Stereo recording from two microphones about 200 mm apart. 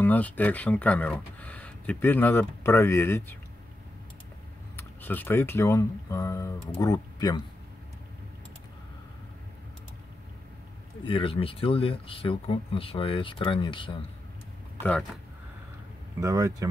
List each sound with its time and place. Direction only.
0.0 s speech: 10° left (ahead or behind)
4.7 s speech: 10° left (ahead or behind)
11.1 s speech: 25° left (ahead or behind)
14.8 s speech: 5° left (ahead or behind)
16.2 s speech: 15° right (ahead or behind)